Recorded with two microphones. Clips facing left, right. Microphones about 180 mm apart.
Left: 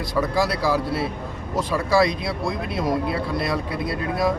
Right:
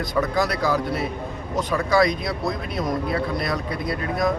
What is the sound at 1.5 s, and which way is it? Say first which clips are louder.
Speech: even; 5° left (ahead or behind).